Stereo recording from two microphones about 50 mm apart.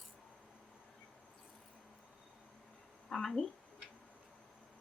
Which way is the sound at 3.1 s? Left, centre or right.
Centre.